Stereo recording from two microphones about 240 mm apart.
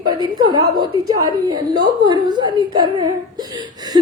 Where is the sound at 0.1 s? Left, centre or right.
Centre.